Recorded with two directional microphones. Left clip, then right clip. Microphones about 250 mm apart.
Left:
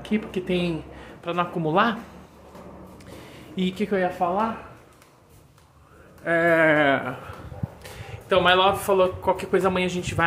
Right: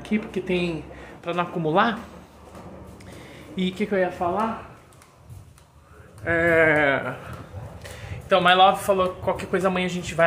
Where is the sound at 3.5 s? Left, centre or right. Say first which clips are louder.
Right 1 dB; centre.